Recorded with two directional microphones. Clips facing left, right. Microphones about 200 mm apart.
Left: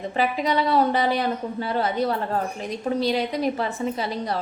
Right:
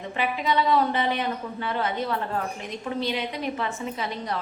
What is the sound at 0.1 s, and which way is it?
A woman's voice, 40° left (ahead or behind).